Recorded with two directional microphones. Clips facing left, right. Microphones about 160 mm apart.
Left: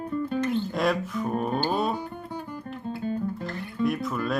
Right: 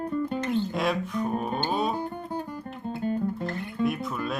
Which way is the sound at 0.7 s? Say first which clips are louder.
Left 2 dB; centre (ahead or behind).